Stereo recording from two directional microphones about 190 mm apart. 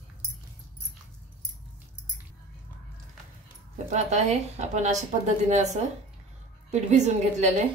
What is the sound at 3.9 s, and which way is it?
A woman's voice, 35° right (ahead or behind).